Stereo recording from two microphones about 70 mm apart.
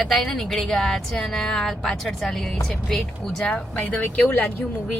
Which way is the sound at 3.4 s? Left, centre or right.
Left.